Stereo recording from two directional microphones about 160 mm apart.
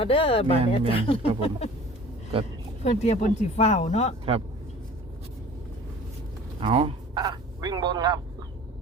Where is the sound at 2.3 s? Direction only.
35° right (ahead or behind).